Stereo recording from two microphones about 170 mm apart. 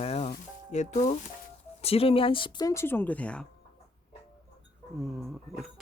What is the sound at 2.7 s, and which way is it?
Speech, 15° left (ahead or behind).